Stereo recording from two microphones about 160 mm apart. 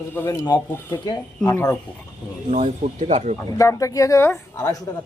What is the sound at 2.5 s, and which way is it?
Speech, 45° right (ahead or behind).